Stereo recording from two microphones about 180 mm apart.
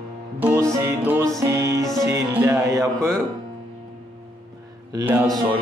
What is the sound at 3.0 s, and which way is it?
Music, 5° left (ahead or behind).